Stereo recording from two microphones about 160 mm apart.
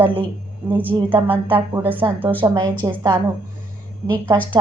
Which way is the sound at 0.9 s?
15° right (ahead or behind).